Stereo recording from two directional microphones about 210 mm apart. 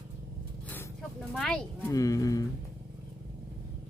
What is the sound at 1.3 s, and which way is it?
Speech, 5° left (ahead or behind).